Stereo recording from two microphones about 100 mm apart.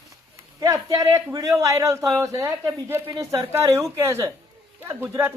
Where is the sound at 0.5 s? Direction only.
40° right (ahead or behind).